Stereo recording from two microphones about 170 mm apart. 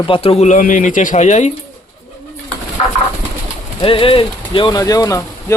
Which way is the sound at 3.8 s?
30° left (ahead or behind).